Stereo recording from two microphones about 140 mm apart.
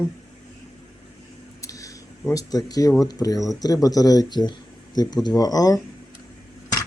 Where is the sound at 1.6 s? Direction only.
25° left (ahead or behind).